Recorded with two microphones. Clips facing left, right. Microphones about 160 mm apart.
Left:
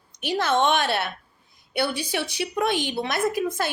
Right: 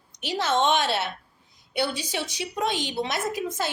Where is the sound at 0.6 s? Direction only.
55° left (ahead or behind).